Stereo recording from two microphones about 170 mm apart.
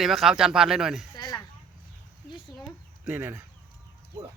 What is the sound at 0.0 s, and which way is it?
A man's voice, centre (ahead or behind).